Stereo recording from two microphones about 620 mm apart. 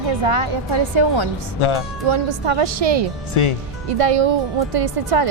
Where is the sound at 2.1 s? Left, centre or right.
Right.